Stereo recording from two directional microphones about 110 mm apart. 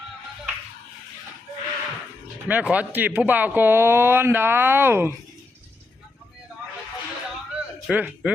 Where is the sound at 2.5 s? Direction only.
15° right (ahead or behind).